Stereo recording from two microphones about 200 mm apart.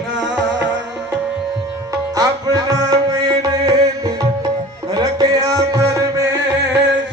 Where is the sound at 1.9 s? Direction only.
20° right (ahead or behind).